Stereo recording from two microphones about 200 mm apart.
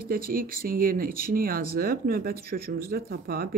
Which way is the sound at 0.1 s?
45° right (ahead or behind).